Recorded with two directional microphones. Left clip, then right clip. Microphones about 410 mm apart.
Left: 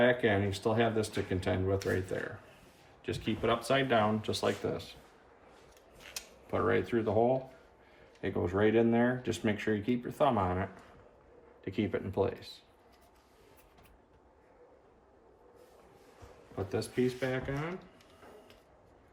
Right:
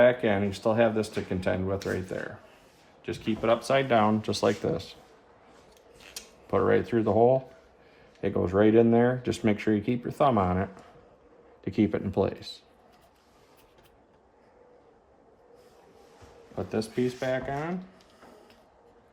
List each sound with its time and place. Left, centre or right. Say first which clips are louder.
0.0 s speech: right 5 dB; centre
3.0 s speech: right 4 dB; centre
6.5 s speech: right 6 dB; centre
16.7 s speech: right 3 dB; centre